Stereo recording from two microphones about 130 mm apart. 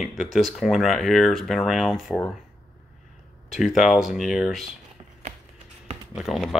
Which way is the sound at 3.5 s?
Centre (ahead or behind).